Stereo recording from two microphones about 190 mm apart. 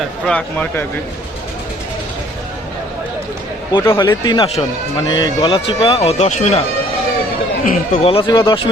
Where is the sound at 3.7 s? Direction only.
20° left (ahead or behind); by 6.6 s 40° left (ahead or behind).